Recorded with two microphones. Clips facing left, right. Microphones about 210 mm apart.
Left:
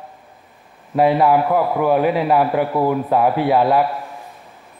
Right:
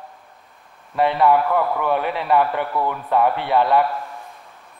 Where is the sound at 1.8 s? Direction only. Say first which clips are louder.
Left 6 dB; 5° left (ahead or behind).